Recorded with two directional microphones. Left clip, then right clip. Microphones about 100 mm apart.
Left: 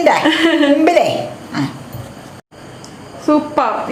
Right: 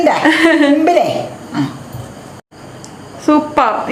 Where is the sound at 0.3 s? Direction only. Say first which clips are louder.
Right 3 dB; 20° right (ahead or behind).